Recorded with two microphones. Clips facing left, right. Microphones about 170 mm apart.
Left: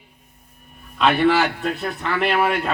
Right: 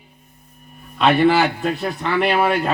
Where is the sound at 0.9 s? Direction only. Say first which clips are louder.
Right 2 dB; centre (ahead or behind).